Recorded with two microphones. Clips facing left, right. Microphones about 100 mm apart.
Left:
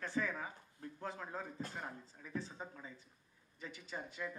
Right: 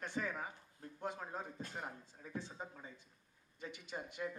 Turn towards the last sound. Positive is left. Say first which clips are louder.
# right 1 dB
turn(degrees=-20)  # may be behind; listen again after turning